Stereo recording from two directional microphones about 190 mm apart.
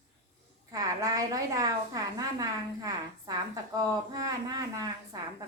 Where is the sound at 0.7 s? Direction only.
20° right (ahead or behind).